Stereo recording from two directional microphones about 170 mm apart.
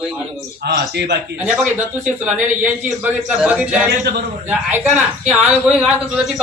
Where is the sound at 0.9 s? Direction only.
80° right.